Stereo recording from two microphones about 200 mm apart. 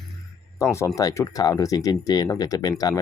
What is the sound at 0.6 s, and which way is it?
Speech, 15° left (ahead or behind).